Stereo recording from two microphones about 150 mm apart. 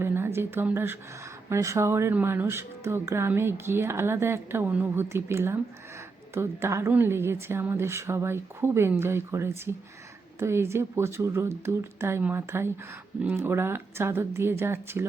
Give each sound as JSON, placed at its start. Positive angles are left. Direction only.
{"t": 0.0, "sound": "a woman's voice", "side_deg": -15}